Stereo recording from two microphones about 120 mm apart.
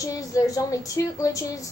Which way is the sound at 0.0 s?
30° left (ahead or behind).